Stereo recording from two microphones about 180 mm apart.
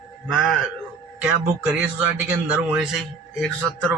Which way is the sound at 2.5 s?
5° right (ahead or behind).